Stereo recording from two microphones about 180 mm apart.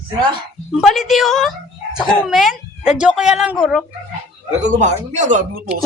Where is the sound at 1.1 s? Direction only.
Centre (ahead or behind).